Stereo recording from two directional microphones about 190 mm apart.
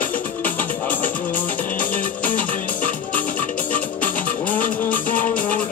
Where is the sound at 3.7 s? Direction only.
10° left (ahead or behind).